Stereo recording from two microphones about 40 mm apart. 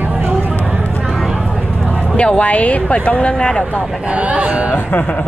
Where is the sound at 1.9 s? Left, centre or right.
Left.